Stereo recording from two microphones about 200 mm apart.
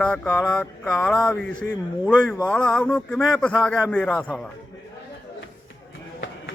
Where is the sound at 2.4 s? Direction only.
5° left (ahead or behind).